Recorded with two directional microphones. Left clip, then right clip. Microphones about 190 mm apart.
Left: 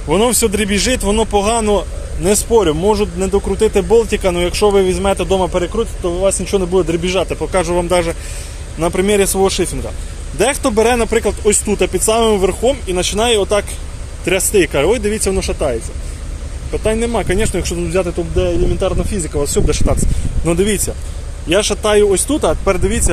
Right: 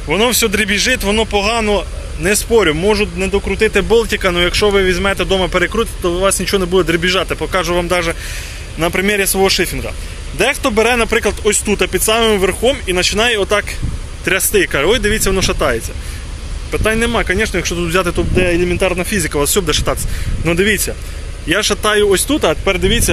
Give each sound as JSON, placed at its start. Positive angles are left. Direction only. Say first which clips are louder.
{"t": 0.1, "sound": "speech", "louder": "even", "side_deg": 15}
{"t": 5.5, "sound": "speech", "louder": "right 2 dB", "side_deg": -35}
{"t": 6.2, "sound": "speech", "louder": "even", "side_deg": 0}
{"t": 6.6, "sound": "speech", "louder": "right 1 dB", "side_deg": -35}
{"t": 6.9, "sound": "speech", "louder": "right 2 dB", "side_deg": 0}
{"t": 17.8, "sound": "speech", "louder": "right 1 dB", "side_deg": -5}
{"t": 20.4, "sound": "speech", "louder": "right 2 dB", "side_deg": 10}